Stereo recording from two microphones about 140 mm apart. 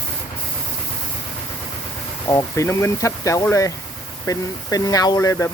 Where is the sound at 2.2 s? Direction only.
25° left (ahead or behind).